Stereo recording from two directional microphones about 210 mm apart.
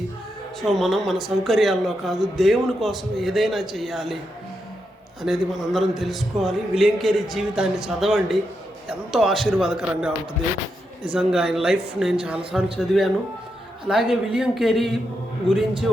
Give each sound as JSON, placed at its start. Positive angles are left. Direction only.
{"t": 0.6, "sound": "a man's voice", "side_deg": 0}
{"t": 5.2, "sound": "a man's voice", "side_deg": 0}
{"t": 11.1, "sound": "a man's voice", "side_deg": -5}